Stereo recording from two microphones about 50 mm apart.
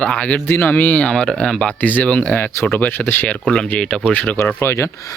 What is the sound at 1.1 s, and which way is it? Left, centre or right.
Speech, centre.